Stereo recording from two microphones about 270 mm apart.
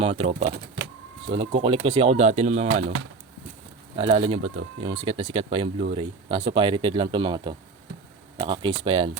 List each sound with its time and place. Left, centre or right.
0.0 s speech: right
3.9 s speech: centre